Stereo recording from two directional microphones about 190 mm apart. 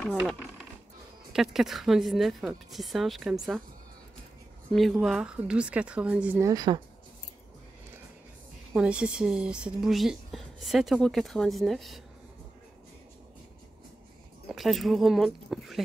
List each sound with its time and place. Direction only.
1.3 s a woman's voice: centre (ahead or behind)
4.7 s a woman's voice: centre (ahead or behind)
6.5 s speech: 20° right (ahead or behind)
8.7 s a woman's voice: 5° right (ahead or behind)
14.5 s a woman's voice: centre (ahead or behind)